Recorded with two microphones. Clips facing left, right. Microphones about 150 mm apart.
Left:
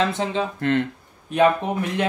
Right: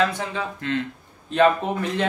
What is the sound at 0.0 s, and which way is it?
Speech, 25° left (ahead or behind).